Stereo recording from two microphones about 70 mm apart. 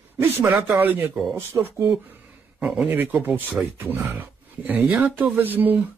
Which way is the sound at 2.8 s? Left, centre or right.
Right.